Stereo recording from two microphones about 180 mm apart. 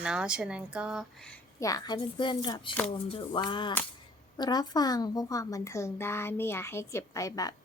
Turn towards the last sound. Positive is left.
turn(degrees=20)  # may be behind; listen again after turning